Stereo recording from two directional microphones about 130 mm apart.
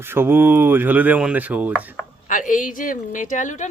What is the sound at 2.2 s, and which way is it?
A woman's voice, 90° left.